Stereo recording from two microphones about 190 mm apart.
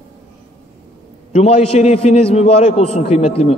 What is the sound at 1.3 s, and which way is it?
A man's voice, 35° left (ahead or behind).